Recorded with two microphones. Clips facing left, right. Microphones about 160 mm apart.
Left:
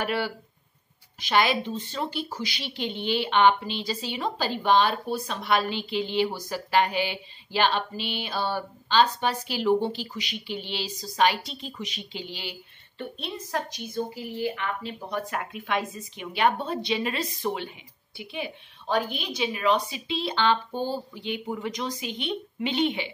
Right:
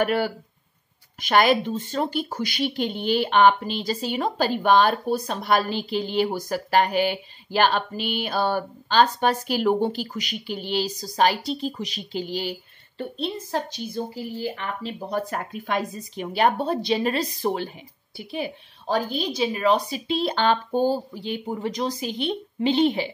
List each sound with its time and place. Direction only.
0.0 s a woman's voice: 50° right (ahead or behind)